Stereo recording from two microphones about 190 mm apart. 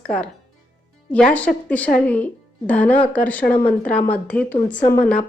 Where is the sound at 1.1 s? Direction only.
5° left (ahead or behind).